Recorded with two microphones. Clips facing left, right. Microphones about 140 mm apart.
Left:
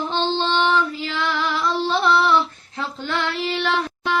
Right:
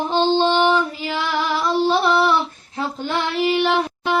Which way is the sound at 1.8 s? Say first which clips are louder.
Right 2 dB; 15° right (ahead or behind).